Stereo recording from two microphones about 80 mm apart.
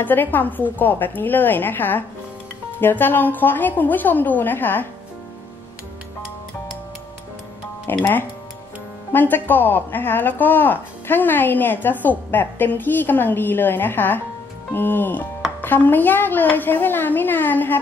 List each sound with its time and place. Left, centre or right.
0.0 s speech: left
7.9 s speech: left
9.1 s speech: left